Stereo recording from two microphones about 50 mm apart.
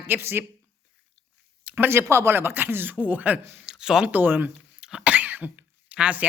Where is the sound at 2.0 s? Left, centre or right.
Right.